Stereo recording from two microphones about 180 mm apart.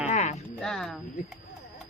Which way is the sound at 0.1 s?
40° left (ahead or behind).